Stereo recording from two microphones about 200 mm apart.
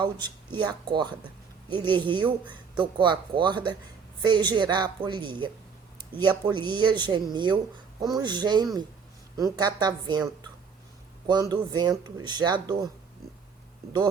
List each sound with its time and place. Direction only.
0.0 s speech: 20° right (ahead or behind)